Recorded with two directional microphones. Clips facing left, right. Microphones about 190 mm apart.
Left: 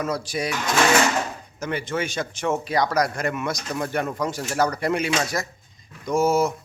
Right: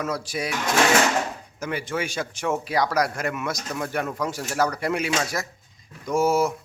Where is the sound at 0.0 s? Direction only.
5° right (ahead or behind).